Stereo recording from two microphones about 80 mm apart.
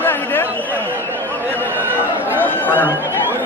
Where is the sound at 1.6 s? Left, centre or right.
Right.